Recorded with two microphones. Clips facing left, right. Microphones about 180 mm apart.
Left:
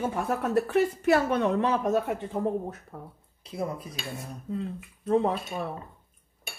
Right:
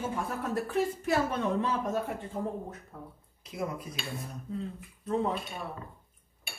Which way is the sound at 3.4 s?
30° left (ahead or behind).